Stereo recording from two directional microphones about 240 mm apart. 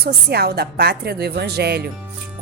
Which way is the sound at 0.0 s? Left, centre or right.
Right.